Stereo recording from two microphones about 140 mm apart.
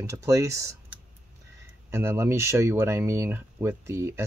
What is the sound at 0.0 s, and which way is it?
Speech, 20° right (ahead or behind).